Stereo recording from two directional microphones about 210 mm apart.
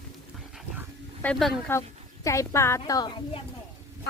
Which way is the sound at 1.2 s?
5° left (ahead or behind).